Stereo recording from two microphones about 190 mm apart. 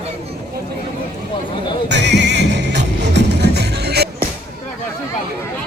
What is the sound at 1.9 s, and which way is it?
Music, 65° right (ahead or behind).